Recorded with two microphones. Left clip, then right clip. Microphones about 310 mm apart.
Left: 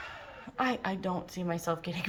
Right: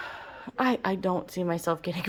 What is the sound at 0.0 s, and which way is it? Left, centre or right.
Speech, centre.